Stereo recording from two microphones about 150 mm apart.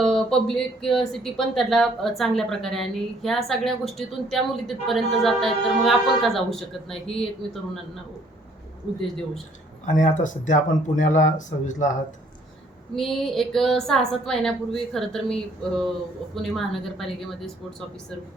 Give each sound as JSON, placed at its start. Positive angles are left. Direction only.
{"t": 0.0, "sound": "speech", "side_deg": 5}
{"t": 9.8, "sound": "speech", "side_deg": 60}
{"t": 13.0, "sound": "speech", "side_deg": 0}